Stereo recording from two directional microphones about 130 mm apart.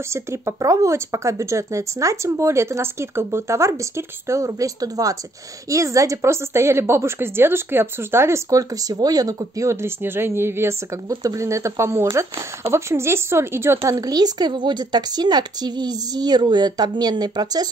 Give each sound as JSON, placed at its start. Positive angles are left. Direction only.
{"t": 0.1, "sound": "a woman's voice", "side_deg": -20}